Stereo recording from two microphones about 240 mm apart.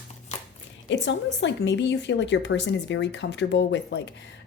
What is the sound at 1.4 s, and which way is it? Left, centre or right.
Speech, left.